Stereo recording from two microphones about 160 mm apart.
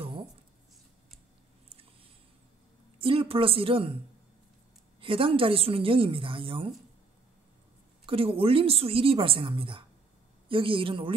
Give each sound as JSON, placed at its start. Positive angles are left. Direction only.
{"t": 0.0, "sound": "a sound", "side_deg": -30}
{"t": 3.0, "sound": "a woman's voice", "side_deg": -35}
{"t": 5.0, "sound": "a woman's voice", "side_deg": -35}
{"t": 8.1, "sound": "a woman's voice", "side_deg": -35}